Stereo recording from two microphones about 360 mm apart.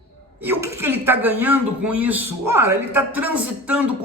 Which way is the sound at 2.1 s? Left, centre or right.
Right.